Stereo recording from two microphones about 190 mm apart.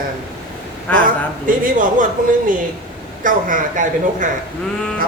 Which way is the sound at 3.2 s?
45° right (ahead or behind).